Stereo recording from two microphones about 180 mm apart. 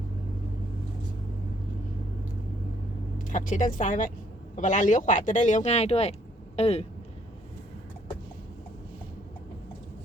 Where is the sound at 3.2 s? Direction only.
45° left (ahead or behind).